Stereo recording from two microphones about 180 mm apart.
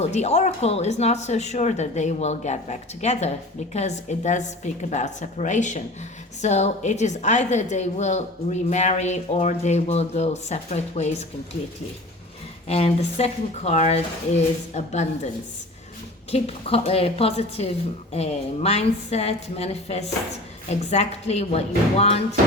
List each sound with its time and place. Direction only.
0.0 s speech: 35° left (ahead or behind)
12.6 s speech: 35° left (ahead or behind)
16.3 s speech: 35° left (ahead or behind)